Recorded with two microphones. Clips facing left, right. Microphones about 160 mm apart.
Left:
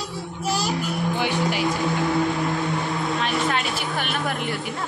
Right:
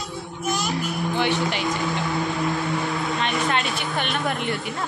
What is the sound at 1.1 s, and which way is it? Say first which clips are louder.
Music: right 2 dB; 10° left (ahead or behind).